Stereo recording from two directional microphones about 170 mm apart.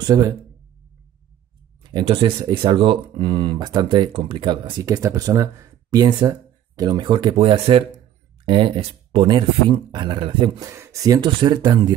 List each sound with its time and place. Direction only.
0.0 s speech: 20° right (ahead or behind)
1.8 s speech: 30° right (ahead or behind)
10.7 s speech: 20° right (ahead or behind)